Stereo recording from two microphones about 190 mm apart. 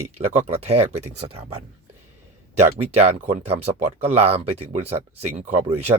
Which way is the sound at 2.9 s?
35° right (ahead or behind).